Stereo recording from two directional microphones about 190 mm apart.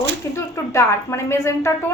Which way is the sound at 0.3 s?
15° left (ahead or behind).